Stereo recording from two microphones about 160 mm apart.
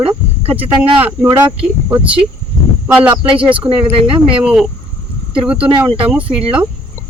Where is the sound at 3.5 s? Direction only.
35° right (ahead or behind).